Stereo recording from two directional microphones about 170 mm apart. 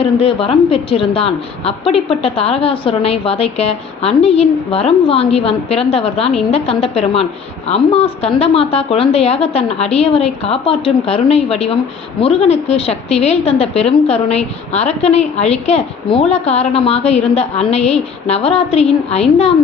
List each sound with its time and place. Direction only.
0.0 s a woman's voice: 35° left (ahead or behind)